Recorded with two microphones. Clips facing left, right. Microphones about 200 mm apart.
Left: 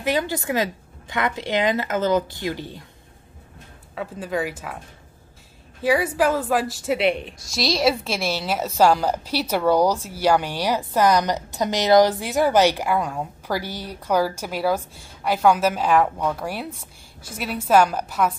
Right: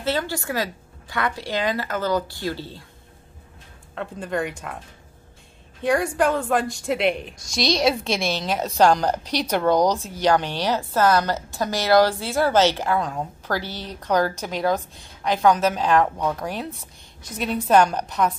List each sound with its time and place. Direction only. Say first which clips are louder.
0.0 s a woman's voice: left 2 dB; 15° left (ahead or behind)
3.9 s a woman's voice: left 1 dB; 5° left (ahead or behind)
5.8 s a woman's voice: left 1 dB; 5° left (ahead or behind)